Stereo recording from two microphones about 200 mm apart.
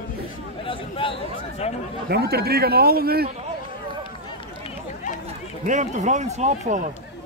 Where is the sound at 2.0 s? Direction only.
50° right (ahead or behind).